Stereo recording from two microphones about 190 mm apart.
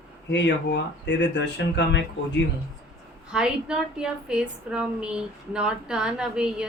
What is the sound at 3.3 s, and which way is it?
A woman's voice, 5° right (ahead or behind).